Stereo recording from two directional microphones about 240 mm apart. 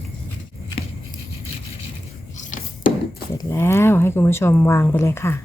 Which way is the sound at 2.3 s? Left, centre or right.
Left.